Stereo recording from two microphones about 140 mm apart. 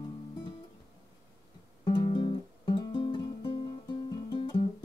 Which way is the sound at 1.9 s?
35° left (ahead or behind).